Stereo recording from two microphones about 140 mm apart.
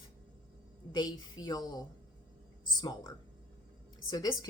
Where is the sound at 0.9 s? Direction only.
30° left (ahead or behind).